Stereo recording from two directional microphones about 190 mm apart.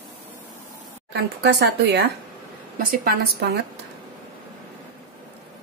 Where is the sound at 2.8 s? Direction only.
50° right (ahead or behind).